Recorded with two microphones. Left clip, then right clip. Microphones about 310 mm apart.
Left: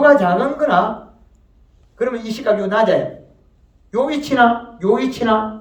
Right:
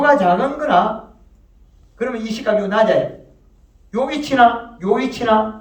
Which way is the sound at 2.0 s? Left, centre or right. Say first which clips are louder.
Left 2 dB; left.